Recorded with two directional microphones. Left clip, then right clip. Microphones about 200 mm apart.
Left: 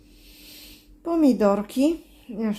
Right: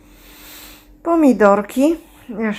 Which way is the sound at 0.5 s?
10° right (ahead or behind).